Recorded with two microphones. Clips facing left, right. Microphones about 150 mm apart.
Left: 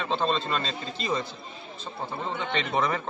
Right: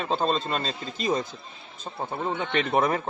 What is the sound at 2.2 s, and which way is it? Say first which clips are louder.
Speech: right 4 dB; 55° right (ahead or behind).